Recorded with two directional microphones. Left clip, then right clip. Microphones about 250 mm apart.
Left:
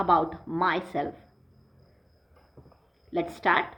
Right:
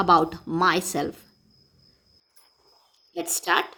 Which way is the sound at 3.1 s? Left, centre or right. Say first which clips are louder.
Even; right.